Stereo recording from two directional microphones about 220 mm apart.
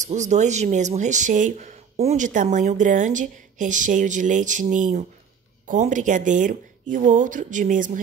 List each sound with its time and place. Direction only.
0.0 s speech: 35° right (ahead or behind)